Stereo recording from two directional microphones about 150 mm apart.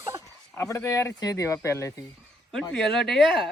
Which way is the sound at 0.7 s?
20° left (ahead or behind).